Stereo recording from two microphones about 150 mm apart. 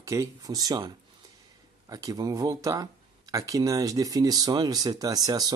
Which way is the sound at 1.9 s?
25° right (ahead or behind).